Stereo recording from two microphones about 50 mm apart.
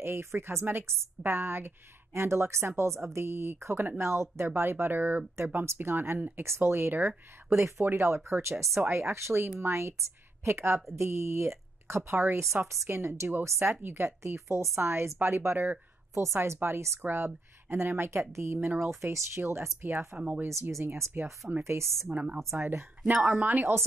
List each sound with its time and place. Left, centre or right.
0.0 s a woman's voice: right
3.7 s a woman's voice: right
4.0 s speech: right
4.6 s a woman's voice: right
7.5 s speech: right
13.4 s speech: right
13.8 s a woman's voice: right
18.9 s a woman's voice: right
20.2 s speech: right
21.6 s speech: right
22.1 s speech: right
22.5 s a woman's voice: right